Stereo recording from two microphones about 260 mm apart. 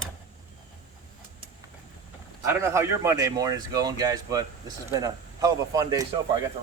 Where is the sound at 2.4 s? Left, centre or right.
Centre.